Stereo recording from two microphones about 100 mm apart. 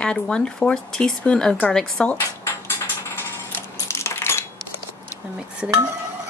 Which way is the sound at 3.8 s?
25° left (ahead or behind).